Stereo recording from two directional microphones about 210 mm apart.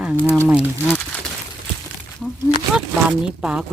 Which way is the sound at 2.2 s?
Centre (ahead or behind).